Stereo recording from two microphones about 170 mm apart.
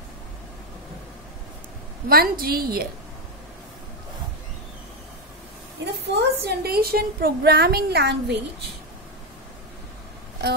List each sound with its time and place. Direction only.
2.0 s a woman's voice: 60° right (ahead or behind)
5.9 s a woman's voice: 80° right